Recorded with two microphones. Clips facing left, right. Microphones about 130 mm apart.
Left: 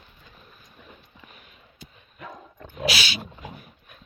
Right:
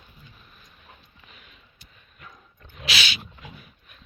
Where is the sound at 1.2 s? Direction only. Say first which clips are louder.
Even; 40° left (ahead or behind).